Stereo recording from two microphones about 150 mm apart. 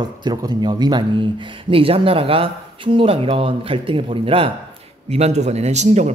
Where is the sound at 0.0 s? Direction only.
25° right (ahead or behind).